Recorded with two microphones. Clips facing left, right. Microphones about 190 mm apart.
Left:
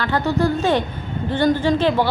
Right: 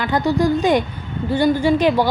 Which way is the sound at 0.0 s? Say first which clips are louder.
Right 2 dB; 15° right (ahead or behind).